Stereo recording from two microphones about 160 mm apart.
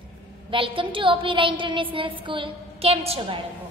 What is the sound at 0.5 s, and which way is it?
A woman's voice, 30° right (ahead or behind).